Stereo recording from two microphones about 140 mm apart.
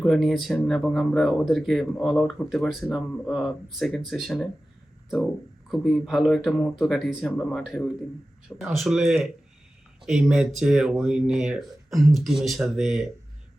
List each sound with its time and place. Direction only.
0.0 s speech: centre (ahead or behind)
5.6 s speech: centre (ahead or behind)